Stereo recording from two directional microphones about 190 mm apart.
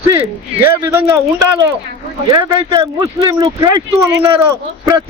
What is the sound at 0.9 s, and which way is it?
Speech, 15° right (ahead or behind).